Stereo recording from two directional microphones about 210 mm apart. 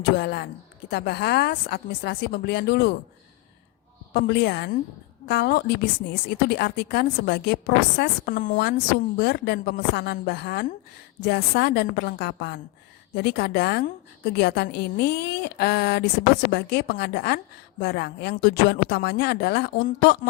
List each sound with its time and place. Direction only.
0.2 s speech: 50° left (ahead or behind)
4.1 s speech: 50° left (ahead or behind)